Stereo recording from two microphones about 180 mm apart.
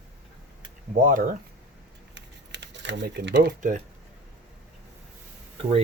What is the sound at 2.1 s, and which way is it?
Typing, 75° right (ahead or behind).